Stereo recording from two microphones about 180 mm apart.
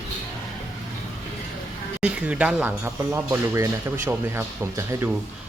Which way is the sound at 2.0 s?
5° right (ahead or behind).